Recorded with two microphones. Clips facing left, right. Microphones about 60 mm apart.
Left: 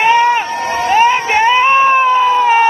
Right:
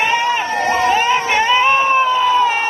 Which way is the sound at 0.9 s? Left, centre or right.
Left.